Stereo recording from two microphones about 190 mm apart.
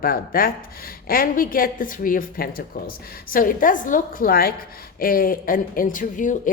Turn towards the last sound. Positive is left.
turn(degrees=45)  # may be behind; listen again after turning